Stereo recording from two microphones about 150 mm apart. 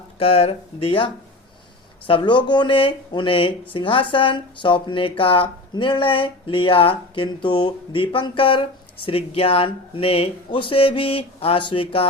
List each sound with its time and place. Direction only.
0.2 s speech: 40° left (ahead or behind)